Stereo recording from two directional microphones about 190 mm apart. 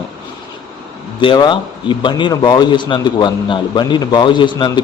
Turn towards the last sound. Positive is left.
turn(degrees=25)  # may be behind; listen again after turning